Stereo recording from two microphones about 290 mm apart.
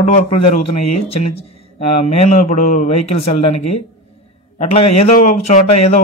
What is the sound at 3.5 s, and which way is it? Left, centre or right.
Speech, left.